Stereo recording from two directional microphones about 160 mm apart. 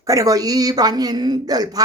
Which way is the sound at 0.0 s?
20° right (ahead or behind).